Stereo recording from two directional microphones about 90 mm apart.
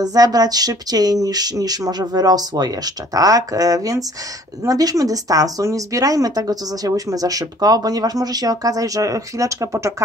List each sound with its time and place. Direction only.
0.0 s speech: 45° right (ahead or behind)